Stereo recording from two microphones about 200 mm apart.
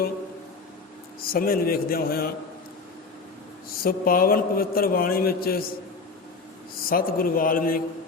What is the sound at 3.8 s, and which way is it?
A man's voice, 45° left (ahead or behind).